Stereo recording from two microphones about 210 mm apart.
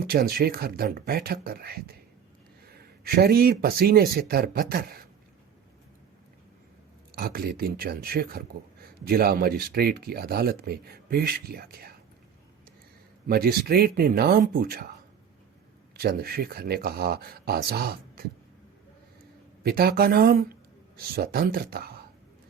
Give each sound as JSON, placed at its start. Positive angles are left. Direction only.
{"t": 0.0, "sound": "speech", "side_deg": -45}
{"t": 7.2, "sound": "speech", "side_deg": -45}
{"t": 13.2, "sound": "speech", "side_deg": -45}
{"t": 16.0, "sound": "speech", "side_deg": -45}
{"t": 19.6, "sound": "speech", "side_deg": -45}